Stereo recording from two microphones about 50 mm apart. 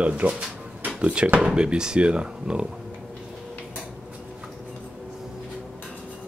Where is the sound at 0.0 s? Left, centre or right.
Right.